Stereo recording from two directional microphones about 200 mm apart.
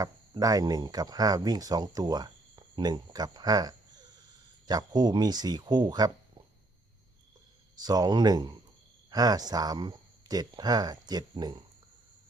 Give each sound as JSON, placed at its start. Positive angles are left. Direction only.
{"t": 0.0, "sound": "speech", "side_deg": -20}
{"t": 7.9, "sound": "speech", "side_deg": -20}